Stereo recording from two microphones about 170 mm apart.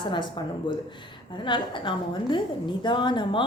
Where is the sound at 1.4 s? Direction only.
30° left (ahead or behind).